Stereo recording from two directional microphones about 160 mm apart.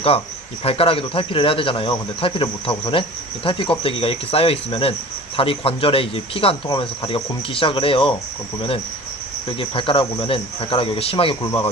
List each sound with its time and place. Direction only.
0.6 s speech: 35° left (ahead or behind)
9.6 s speech: 35° left (ahead or behind)